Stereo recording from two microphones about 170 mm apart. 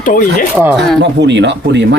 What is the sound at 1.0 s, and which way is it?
Speech, 90° right.